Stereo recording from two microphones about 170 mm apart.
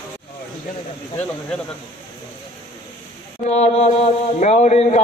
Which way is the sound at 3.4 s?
40° left (ahead or behind).